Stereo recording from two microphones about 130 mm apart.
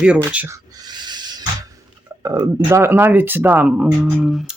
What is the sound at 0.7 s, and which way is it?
Owl, 30° right (ahead or behind).